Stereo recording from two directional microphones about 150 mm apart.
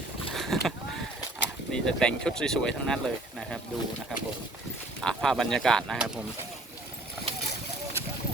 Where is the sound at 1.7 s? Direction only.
5° left (ahead or behind).